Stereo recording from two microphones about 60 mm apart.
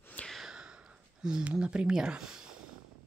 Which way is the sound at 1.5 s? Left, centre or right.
Centre.